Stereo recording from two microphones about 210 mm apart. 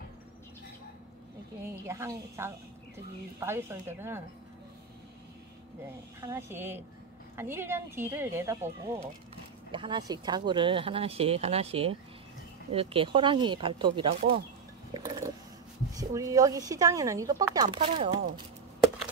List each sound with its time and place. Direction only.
1.6 s speech: 15° right (ahead or behind)
6.2 s speech: 10° right (ahead or behind)
15.0 s a sound: 20° right (ahead or behind)
15.9 s speech: 15° right (ahead or behind)